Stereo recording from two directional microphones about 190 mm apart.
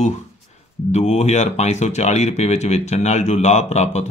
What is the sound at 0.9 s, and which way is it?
Speech, 35° left (ahead or behind).